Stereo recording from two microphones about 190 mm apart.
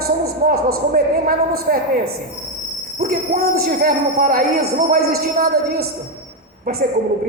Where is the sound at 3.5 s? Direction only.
50° right (ahead or behind).